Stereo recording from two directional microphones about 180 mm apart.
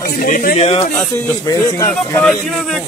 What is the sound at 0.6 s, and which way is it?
Speech, 35° left (ahead or behind).